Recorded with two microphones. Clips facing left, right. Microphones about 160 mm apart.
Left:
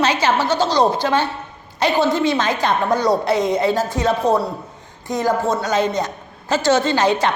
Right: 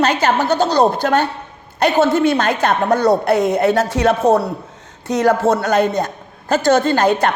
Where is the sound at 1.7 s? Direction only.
55° right (ahead or behind).